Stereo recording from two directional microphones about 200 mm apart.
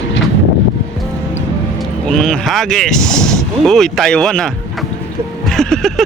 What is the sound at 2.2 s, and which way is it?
Speech, centre (ahead or behind).